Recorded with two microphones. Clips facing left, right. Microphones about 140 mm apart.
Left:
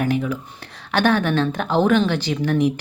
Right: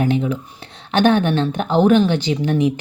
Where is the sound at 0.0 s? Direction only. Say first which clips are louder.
Right 3 dB; 25° right (ahead or behind).